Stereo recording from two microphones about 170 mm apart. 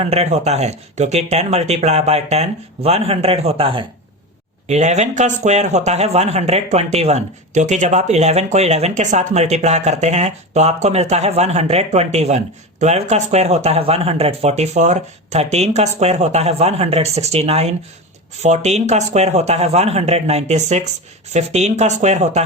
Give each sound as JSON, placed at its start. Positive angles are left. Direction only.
{"t": 0.0, "sound": "a man's voice", "side_deg": -40}